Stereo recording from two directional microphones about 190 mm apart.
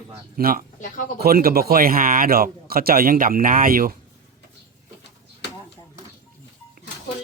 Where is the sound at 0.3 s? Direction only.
50° right (ahead or behind).